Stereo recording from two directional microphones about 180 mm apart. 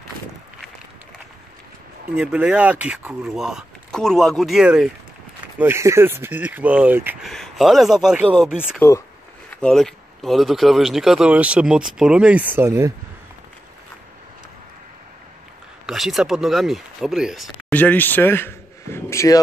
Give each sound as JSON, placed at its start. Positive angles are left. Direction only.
{"t": 2.1, "sound": "speech", "side_deg": -5}
{"t": 5.6, "sound": "speech", "side_deg": -15}
{"t": 7.2, "sound": "speech", "side_deg": 0}
{"t": 15.9, "sound": "speech", "side_deg": 0}